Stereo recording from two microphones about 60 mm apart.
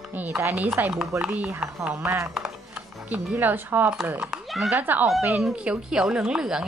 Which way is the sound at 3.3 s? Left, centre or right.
Right.